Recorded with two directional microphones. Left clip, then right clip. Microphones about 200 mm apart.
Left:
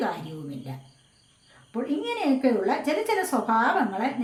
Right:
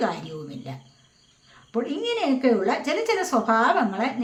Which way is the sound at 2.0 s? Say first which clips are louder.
Right 1 dB; 35° right (ahead or behind).